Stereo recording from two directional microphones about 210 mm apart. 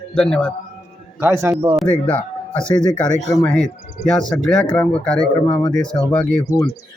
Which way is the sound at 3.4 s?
5° left (ahead or behind).